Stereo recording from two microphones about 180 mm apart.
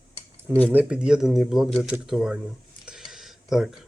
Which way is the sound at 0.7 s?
10° right (ahead or behind).